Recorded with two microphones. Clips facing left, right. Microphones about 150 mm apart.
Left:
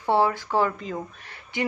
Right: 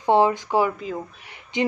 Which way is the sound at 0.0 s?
20° right (ahead or behind).